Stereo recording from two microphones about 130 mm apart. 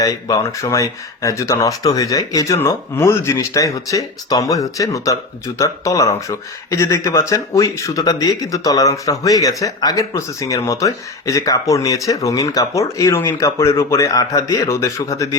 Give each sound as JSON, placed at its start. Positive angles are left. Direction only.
{"t": 0.0, "sound": "speech", "side_deg": 30}